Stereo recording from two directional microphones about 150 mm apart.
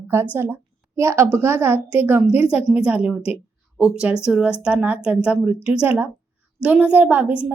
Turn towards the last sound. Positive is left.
turn(degrees=-10)  # may be behind; listen again after turning